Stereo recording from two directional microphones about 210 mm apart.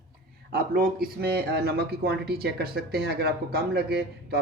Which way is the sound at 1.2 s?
50° right (ahead or behind).